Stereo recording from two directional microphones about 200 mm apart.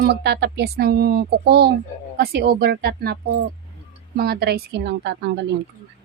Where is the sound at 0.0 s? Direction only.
55° right (ahead or behind).